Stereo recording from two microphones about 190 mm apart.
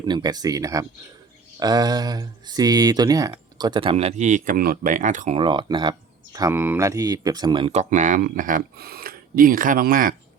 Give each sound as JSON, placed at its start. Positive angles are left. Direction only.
{"t": 0.0, "sound": "speech", "side_deg": -20}
{"t": 5.4, "sound": "speech", "side_deg": -25}